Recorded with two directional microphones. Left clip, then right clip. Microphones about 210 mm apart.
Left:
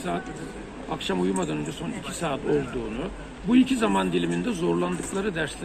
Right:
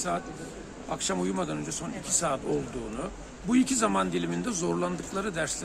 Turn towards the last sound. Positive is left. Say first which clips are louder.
# left 3 dB
turn(degrees=-20)  # may be behind; listen again after turning